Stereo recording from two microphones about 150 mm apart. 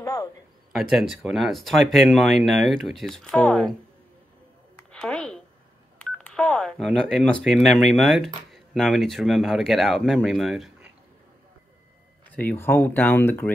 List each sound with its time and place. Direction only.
0.0 s a sound: 25° left (ahead or behind)
0.7 s speech: centre (ahead or behind)
4.9 s a sound: 5° left (ahead or behind)
6.1 s telephone dialing: 5° left (ahead or behind)
7.5 s speech: centre (ahead or behind)
12.3 s speech: 10° left (ahead or behind)